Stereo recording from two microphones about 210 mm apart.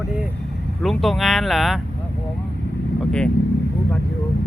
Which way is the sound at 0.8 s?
Centre (ahead or behind).